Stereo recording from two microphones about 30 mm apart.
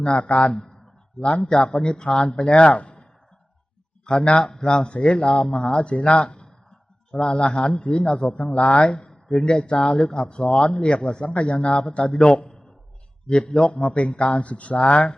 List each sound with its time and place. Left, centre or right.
0.0 s a man's voice: left
2.2 s a man's voice: left
4.5 s a man's voice: left
9.0 s speech: left
10.0 s speech: left
10.2 s a man's voice: left